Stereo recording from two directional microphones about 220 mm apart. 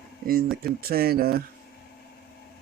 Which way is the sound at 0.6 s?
45° right (ahead or behind).